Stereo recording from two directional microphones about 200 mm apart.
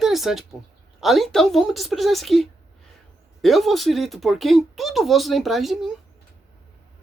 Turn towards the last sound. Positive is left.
turn(degrees=0)  # may be behind; listen again after turning